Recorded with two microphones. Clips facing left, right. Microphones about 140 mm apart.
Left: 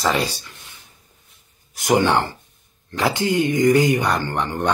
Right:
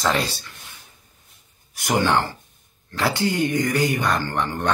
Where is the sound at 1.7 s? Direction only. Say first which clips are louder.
Left 3 dB; 20° left (ahead or behind).